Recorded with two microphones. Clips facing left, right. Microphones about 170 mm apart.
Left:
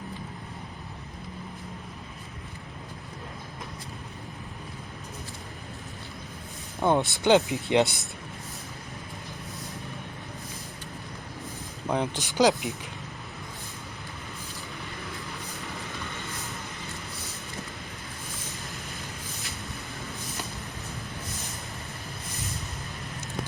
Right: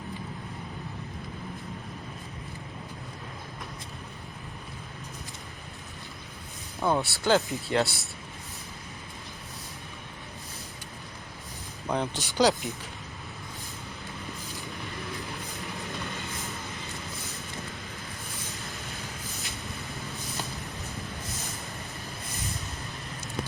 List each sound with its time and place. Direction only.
6.8 s speech: 20° left (ahead or behind)
11.9 s speech: 10° left (ahead or behind)